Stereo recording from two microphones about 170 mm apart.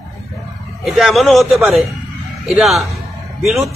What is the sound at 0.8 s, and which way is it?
A man's voice, centre (ahead or behind).